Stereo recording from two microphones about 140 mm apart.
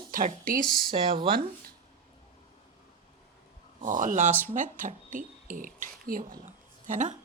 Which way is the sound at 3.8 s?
70° right (ahead or behind).